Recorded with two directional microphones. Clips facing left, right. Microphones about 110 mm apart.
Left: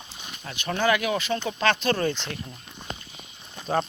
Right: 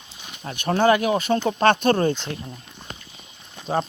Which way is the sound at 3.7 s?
25° right (ahead or behind).